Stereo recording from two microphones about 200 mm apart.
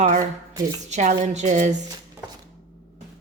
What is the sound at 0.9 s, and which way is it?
Speech, 35° right (ahead or behind).